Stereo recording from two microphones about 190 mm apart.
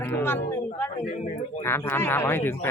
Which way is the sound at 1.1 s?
40° left (ahead or behind).